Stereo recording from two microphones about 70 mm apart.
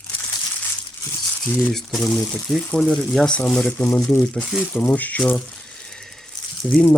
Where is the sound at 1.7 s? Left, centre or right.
Centre.